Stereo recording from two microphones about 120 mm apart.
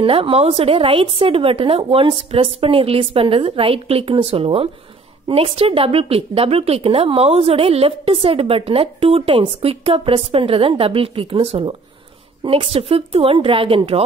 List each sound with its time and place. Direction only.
0.0 s a woman's voice: 50° right (ahead or behind)